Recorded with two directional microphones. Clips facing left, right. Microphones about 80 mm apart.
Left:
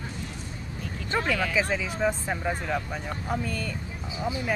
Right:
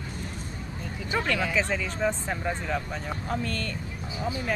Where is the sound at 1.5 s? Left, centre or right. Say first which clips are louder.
Left 1 dB; centre.